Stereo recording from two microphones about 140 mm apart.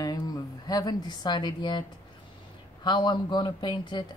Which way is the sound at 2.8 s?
35° left (ahead or behind).